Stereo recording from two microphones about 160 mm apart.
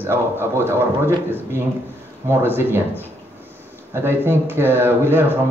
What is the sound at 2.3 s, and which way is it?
Speech, 15° right (ahead or behind).